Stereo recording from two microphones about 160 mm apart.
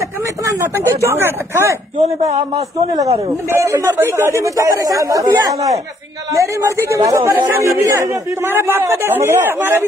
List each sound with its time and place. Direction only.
0.6 s a man's voice: 15° right (ahead or behind)
2.0 s a man's voice: 45° right (ahead or behind)
2.3 s a man's voice: 25° right (ahead or behind)